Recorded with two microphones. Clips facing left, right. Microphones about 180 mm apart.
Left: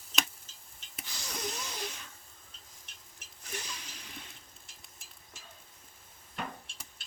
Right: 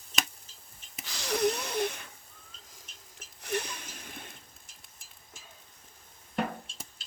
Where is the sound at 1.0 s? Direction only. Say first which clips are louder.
Right 12 dB; 85° right; by 2.0 s 60° right (ahead or behind).